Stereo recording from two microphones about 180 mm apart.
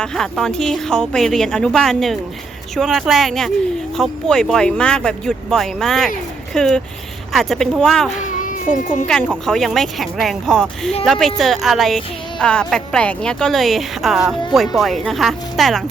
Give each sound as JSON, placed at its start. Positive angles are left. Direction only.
{"t": 0.0, "sound": "speech", "side_deg": 5}
{"t": 8.2, "sound": "a sound", "side_deg": 45}
{"t": 9.0, "sound": "speech", "side_deg": 5}